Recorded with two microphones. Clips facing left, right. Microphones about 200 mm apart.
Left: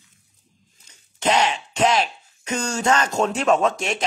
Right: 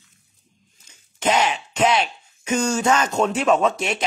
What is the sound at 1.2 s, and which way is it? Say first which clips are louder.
Speech: even; 25° left (ahead or behind).